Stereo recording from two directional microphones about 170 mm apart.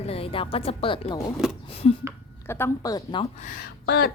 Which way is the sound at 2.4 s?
15° left (ahead or behind).